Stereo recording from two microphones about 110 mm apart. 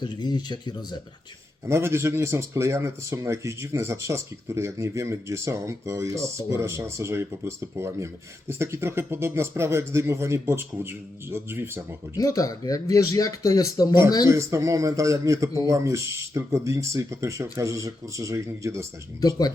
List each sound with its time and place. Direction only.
0.0 s speech: 40° left (ahead or behind)
1.6 s speech: 25° right (ahead or behind)
12.1 s speech: 30° left (ahead or behind)
14.3 s speech: 25° right (ahead or behind)